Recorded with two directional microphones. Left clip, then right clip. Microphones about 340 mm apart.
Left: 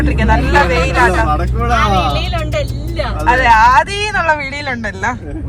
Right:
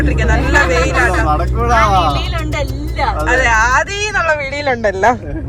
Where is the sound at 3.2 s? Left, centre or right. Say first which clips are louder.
Left 5 dB; centre.